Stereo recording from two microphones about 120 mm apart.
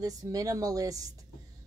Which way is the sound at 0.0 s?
30° right (ahead or behind).